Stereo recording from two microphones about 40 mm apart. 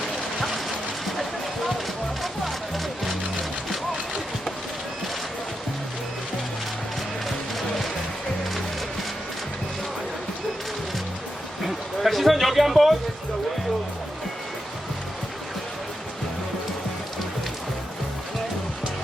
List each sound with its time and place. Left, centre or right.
0.3 s a sound: centre
2.2 s music: centre
11.9 s music: centre